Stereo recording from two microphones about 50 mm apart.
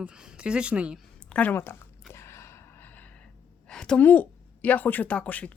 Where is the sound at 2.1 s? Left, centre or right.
Left.